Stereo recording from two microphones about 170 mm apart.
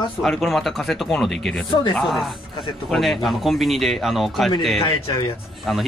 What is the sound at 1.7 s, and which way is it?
Speech, 25° left (ahead or behind).